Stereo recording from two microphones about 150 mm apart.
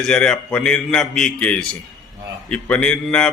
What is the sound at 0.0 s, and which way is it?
A man's voice, 5° left (ahead or behind).